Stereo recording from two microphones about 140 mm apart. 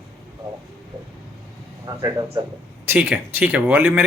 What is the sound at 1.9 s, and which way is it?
Speech, 25° right (ahead or behind).